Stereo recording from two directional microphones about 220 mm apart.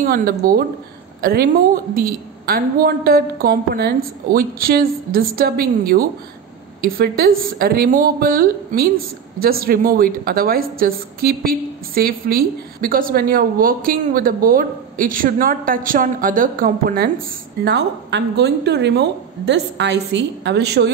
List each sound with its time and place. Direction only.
0.0 s a woman's voice: 40° right (ahead or behind)